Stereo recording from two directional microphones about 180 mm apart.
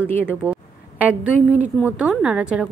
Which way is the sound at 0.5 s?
10° right (ahead or behind).